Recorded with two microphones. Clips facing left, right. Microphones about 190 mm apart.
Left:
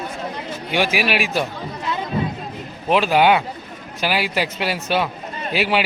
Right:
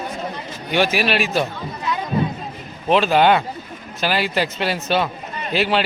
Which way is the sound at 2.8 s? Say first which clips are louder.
Right 1 dB; 10° left (ahead or behind).